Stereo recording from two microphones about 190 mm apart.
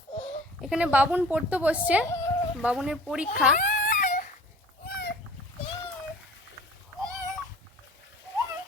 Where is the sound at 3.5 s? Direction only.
45° left (ahead or behind).